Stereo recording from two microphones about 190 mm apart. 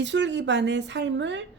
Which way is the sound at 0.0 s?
70° right (ahead or behind).